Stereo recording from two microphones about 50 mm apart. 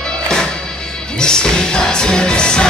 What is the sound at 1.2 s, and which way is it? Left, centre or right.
Music, centre.